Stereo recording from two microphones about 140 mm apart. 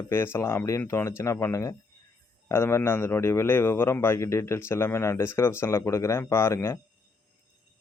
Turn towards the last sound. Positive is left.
turn(degrees=20)  # may be behind; listen again after turning